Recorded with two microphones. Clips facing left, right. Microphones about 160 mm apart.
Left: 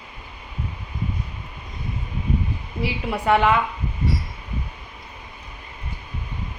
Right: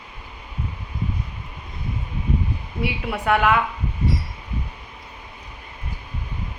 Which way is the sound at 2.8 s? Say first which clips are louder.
Left 1 dB; centre (ahead or behind).